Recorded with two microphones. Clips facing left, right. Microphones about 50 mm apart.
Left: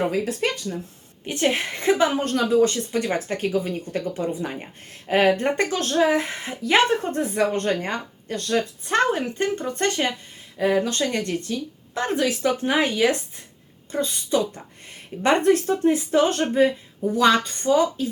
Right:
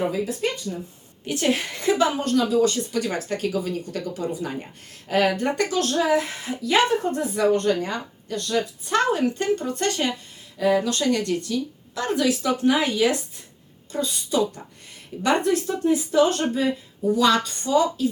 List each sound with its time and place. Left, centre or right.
0.1 s speech: left
1.2 s a woman's voice: centre